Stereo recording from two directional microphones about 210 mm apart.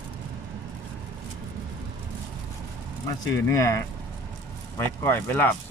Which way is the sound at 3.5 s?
15° left (ahead or behind).